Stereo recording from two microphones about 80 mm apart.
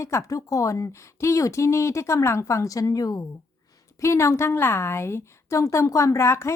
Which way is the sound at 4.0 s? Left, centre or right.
Left.